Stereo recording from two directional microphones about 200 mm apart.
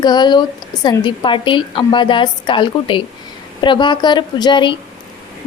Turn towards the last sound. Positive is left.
turn(degrees=25)  # may be behind; listen again after turning